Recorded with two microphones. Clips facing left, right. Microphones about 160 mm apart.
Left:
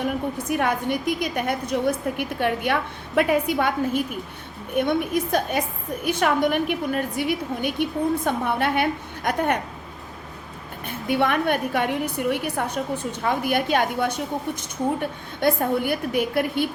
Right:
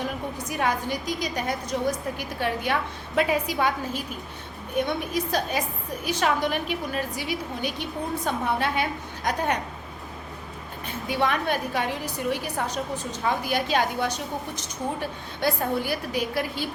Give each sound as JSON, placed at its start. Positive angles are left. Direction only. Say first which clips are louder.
{"t": 0.0, "sound": "a woman's voice", "louder": "left 5 dB", "side_deg": 55}
{"t": 10.8, "sound": "a woman's voice", "louder": "left 3 dB", "side_deg": 55}